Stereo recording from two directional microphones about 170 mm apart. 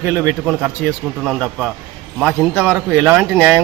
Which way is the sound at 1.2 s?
Centre (ahead or behind).